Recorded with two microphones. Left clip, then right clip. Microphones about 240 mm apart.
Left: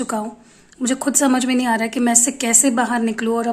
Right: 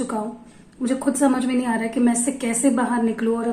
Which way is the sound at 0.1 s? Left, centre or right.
Left.